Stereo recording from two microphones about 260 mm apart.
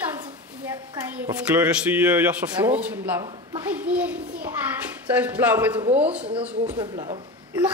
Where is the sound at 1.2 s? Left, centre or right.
Centre.